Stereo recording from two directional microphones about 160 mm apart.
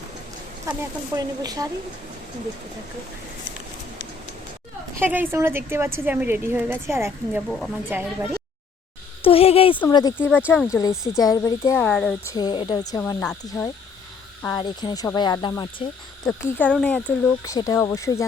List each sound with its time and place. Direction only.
0.6 s speech: 20° right (ahead or behind)
4.9 s a woman's voice: 10° right (ahead or behind)
9.2 s speech: 35° left (ahead or behind)
9.9 s cricket: 25° left (ahead or behind)
10.9 s speech: 5° right (ahead or behind)
11.2 s cricket: 20° left (ahead or behind)
11.9 s speech: 5° left (ahead or behind)
12.2 s cricket: 25° left (ahead or behind)
13.0 s speech: 10° left (ahead or behind)
14.4 s cricket: 25° left (ahead or behind)
16.2 s speech: 5° left (ahead or behind)
17.4 s cricket: 20° left (ahead or behind)